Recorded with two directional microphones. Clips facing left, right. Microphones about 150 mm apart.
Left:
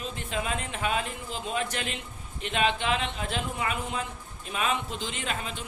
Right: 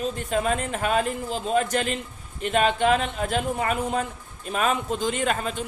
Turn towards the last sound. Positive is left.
turn(degrees=-45)  # may be behind; listen again after turning